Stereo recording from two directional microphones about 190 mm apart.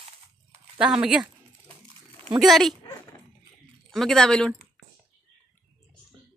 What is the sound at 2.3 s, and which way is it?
Speech, centre (ahead or behind).